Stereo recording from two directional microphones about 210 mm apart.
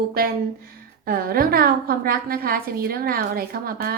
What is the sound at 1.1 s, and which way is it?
A woman's voice, 45° right (ahead or behind).